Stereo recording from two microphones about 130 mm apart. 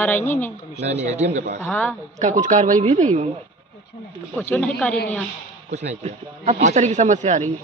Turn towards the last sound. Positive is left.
turn(degrees=-65)  # may be behind; listen again after turning